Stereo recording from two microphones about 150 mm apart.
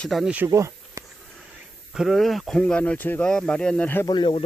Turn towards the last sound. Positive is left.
turn(degrees=35)  # may be behind; listen again after turning